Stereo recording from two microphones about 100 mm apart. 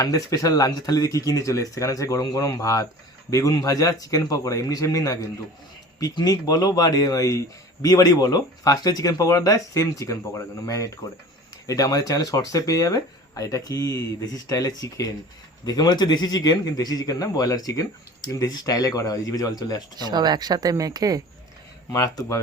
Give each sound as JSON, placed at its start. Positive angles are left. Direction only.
{"t": 0.0, "sound": "speech", "side_deg": 35}
{"t": 20.0, "sound": "speech", "side_deg": -45}
{"t": 21.8, "sound": "speech", "side_deg": 35}